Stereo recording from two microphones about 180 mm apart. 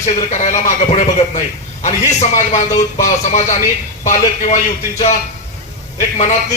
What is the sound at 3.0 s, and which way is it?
Speech, 45° left (ahead or behind).